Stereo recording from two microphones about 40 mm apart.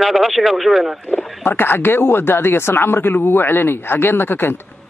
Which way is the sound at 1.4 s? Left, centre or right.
Left.